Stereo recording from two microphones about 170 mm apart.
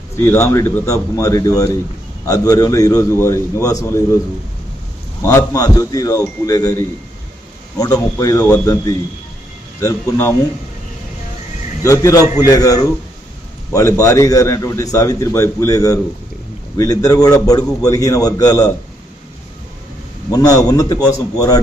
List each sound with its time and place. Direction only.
0.3 s a man's voice: 15° left (ahead or behind)
5.2 s a man's voice: 15° left (ahead or behind)
8.2 s a man's voice: 20° left (ahead or behind)
11.9 s a man's voice: 20° left (ahead or behind)
20.3 s a man's voice: 20° left (ahead or behind)